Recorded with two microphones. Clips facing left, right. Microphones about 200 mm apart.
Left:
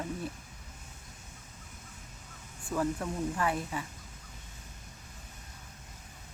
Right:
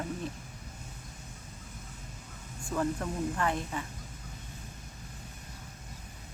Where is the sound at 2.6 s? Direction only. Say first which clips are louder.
Even; 5° left (ahead or behind).